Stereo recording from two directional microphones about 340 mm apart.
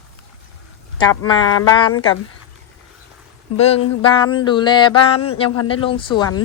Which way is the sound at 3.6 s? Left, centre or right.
Centre.